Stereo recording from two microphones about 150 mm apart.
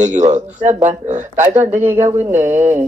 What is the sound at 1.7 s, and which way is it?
Speech, 15° right (ahead or behind).